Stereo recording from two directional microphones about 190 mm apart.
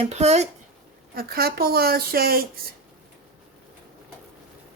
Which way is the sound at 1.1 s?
50° right (ahead or behind).